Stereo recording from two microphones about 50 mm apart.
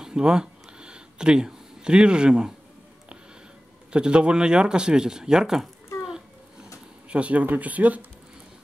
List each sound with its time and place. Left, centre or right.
0.0 s a sound: centre
3.9 s speech: centre
7.1 s speech: right